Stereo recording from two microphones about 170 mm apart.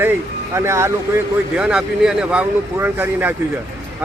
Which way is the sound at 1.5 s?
5° right (ahead or behind).